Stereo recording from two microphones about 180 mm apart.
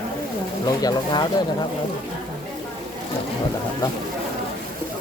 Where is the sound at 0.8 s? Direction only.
20° left (ahead or behind).